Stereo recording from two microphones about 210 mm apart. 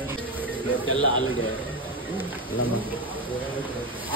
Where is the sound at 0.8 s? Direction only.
80° left.